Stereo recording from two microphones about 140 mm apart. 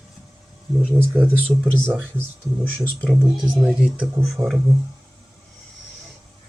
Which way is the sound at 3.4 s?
Centre (ahead or behind).